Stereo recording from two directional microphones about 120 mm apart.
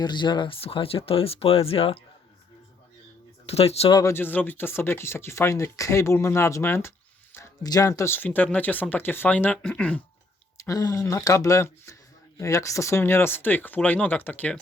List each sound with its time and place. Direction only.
0.0 s speech: 40° left (ahead or behind)
3.4 s speech: 60° left (ahead or behind)
4.1 s speech: 15° left (ahead or behind)
7.6 s speech: 30° left (ahead or behind); by 10.0 s 10° left (ahead or behind)
10.7 s speech: 30° left (ahead or behind); by 14.6 s 15° left (ahead or behind)